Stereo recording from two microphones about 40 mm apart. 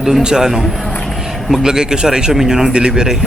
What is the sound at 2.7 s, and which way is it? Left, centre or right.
Speech, right.